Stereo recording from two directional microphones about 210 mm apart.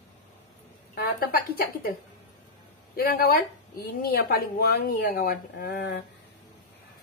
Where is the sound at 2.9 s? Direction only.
45° left (ahead or behind).